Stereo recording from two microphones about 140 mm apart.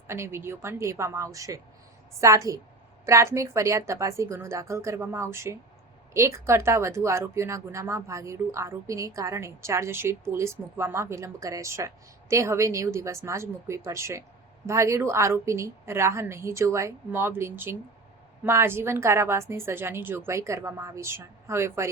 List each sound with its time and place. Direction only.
0.1 s speech: 20° right (ahead or behind)